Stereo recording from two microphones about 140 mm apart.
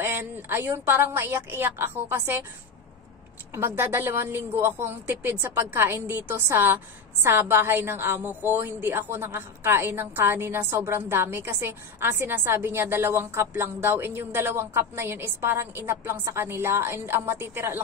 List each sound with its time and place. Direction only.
0.0 s a woman's voice: 15° right (ahead or behind)
3.5 s a woman's voice: 15° right (ahead or behind)